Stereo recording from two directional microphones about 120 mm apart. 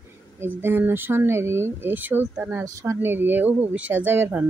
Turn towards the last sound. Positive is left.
turn(degrees=-15)  # may be behind; listen again after turning